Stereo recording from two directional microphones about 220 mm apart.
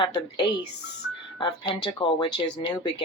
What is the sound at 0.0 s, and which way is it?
Speech, 20° left (ahead or behind).